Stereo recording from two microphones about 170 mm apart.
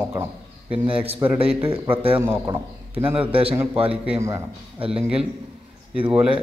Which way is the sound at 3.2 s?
30° right (ahead or behind).